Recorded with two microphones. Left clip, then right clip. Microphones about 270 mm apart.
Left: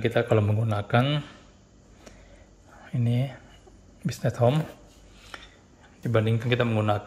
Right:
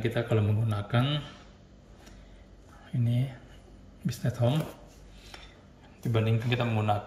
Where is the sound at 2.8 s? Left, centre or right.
Centre.